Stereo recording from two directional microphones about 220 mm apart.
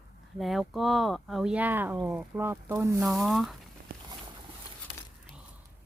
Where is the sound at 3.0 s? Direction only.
Centre (ahead or behind).